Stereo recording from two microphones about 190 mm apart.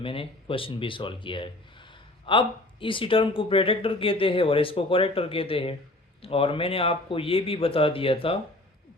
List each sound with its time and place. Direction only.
0.0 s speech: 30° left (ahead or behind)